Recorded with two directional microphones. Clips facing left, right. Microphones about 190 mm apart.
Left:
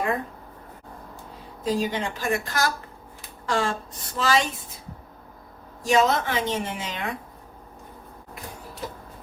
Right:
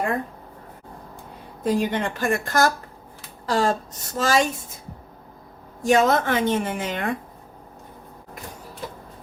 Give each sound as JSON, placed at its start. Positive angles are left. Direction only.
{"t": 1.6, "sound": "a woman's voice", "side_deg": -55}
{"t": 5.8, "sound": "a woman's voice", "side_deg": -50}